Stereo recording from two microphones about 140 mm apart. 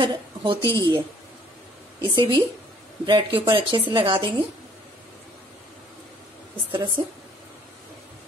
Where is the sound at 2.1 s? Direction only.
30° right (ahead or behind).